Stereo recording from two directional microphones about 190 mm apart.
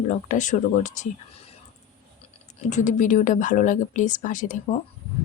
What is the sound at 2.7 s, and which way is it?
Speech, 40° left (ahead or behind).